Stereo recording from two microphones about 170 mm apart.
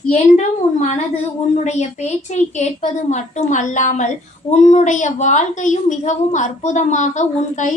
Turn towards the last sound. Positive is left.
turn(degrees=45)  # may be behind; listen again after turning